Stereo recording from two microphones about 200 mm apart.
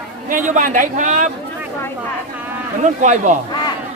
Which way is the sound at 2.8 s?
35° right (ahead or behind).